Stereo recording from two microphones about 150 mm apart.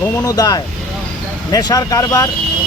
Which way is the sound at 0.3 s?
25° left (ahead or behind).